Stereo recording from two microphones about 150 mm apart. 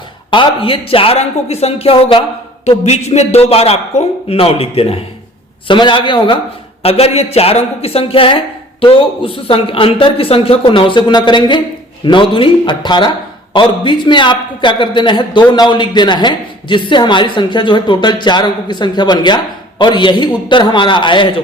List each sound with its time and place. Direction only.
0.3 s a man's voice: 35° left (ahead or behind)